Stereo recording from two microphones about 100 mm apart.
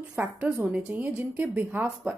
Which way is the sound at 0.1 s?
15° right (ahead or behind).